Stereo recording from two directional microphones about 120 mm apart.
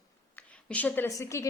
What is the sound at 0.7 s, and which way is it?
Speech, 10° left (ahead or behind).